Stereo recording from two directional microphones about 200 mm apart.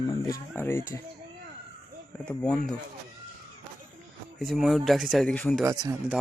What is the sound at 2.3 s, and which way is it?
Speech, 5° left (ahead or behind).